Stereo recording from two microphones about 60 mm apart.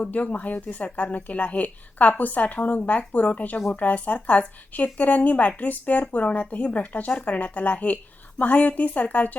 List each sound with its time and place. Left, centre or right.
0.0 s a woman's voice: left